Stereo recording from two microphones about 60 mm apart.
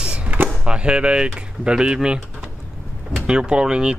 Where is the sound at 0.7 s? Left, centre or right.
Centre.